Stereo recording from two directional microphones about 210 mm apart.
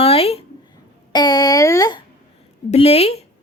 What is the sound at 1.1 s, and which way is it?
Speech, 20° left (ahead or behind).